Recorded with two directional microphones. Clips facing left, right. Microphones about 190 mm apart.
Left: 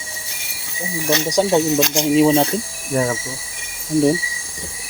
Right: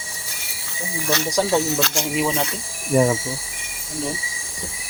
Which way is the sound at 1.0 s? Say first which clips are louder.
Left 4 dB; 20° left (ahead or behind).